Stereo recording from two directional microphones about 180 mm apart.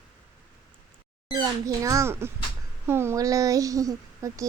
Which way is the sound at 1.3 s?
20° right (ahead or behind).